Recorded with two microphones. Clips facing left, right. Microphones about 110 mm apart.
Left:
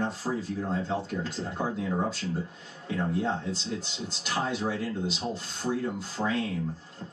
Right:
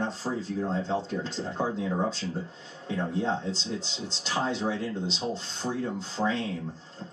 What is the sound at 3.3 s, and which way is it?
Speech, 10° left (ahead or behind).